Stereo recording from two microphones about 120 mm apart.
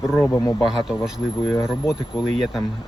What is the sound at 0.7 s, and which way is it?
Speech, 5° right (ahead or behind).